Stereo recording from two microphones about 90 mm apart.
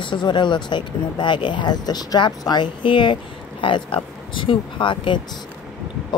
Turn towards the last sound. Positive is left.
turn(degrees=65)  # may be behind; listen again after turning